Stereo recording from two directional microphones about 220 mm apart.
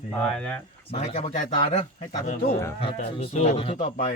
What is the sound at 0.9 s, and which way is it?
Speech, 30° left (ahead or behind).